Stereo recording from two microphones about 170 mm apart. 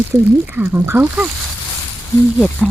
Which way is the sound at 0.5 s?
10° right (ahead or behind).